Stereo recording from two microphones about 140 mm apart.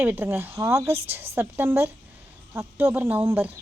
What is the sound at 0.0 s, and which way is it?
Speech, 15° right (ahead or behind).